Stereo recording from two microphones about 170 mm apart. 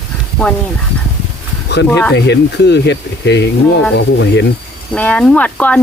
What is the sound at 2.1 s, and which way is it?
Speech, 90° left.